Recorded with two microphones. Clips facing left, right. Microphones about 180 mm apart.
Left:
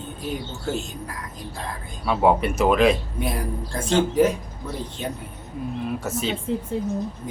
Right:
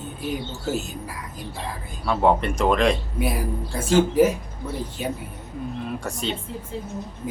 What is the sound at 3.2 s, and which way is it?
Speech, 5° right (ahead or behind).